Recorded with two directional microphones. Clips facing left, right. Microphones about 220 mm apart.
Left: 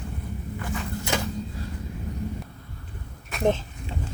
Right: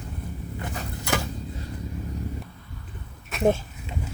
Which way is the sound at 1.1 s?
20° left (ahead or behind).